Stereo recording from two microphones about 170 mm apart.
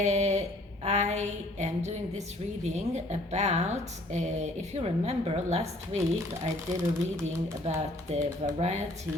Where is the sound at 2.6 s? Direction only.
40° right (ahead or behind).